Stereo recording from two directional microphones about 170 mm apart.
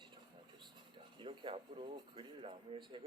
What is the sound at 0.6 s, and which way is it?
Speech, 30° right (ahead or behind).